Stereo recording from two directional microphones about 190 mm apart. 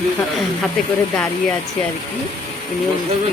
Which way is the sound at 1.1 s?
5° left (ahead or behind).